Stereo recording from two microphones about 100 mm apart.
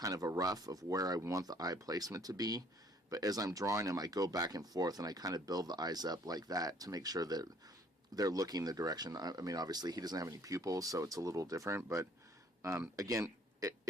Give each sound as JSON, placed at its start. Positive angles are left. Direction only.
{"t": 0.0, "sound": "speech", "side_deg": -35}